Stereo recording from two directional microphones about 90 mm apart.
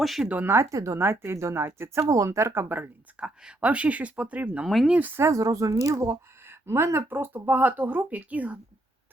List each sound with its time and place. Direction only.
0.0 s speech: centre (ahead or behind)
0.3 s speech: 20° right (ahead or behind)
4.6 s speech: centre (ahead or behind)
4.9 s speech: 20° right (ahead or behind)
5.3 s speech: 40° right (ahead or behind); by 8.5 s 15° right (ahead or behind)